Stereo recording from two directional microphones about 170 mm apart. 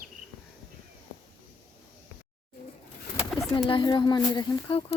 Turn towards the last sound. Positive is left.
turn(degrees=25)  # may be behind; listen again after turning